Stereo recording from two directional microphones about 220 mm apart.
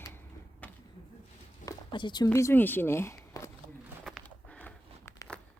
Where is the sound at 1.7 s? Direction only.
20° left (ahead or behind).